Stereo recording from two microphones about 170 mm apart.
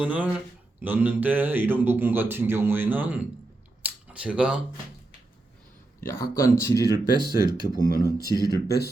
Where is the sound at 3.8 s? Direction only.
5° right (ahead or behind).